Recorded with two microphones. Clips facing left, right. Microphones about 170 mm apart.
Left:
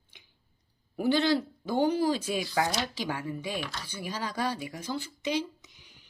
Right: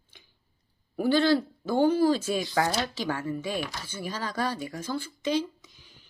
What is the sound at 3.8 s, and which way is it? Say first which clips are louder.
A woman's voice: right 1 dB; 15° left (ahead or behind).